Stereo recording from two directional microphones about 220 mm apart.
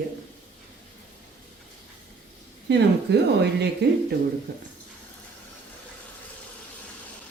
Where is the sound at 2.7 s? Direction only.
50° right (ahead or behind).